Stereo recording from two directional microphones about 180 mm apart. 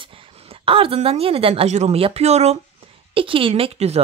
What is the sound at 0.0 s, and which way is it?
Speech, 30° right (ahead or behind).